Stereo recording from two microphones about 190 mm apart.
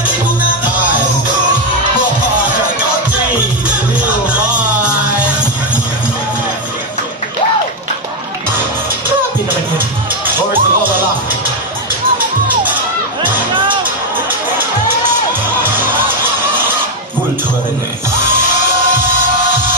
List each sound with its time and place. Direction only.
10.2 s music: 10° right (ahead or behind)
15.6 s music: 10° right (ahead or behind)